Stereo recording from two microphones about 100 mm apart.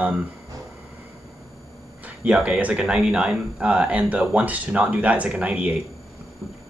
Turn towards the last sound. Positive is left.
turn(degrees=-15)  # may be behind; listen again after turning